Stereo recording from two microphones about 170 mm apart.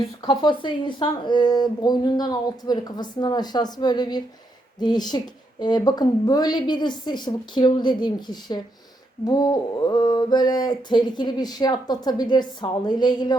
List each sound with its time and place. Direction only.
0.3 s mantra: 25° left (ahead or behind)